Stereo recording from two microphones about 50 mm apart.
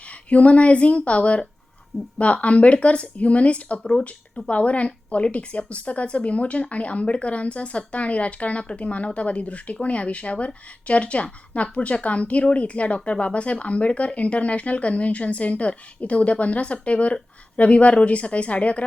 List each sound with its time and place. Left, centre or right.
0.3 s a woman's voice: left